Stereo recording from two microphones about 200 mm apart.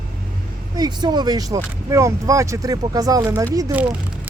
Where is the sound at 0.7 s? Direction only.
20° right (ahead or behind).